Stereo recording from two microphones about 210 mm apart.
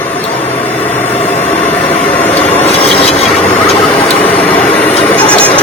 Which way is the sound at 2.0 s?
10° left (ahead or behind).